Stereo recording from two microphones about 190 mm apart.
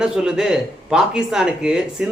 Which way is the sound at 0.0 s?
5° right (ahead or behind).